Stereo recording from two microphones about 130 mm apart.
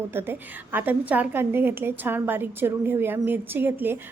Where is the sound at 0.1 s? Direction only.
15° right (ahead or behind).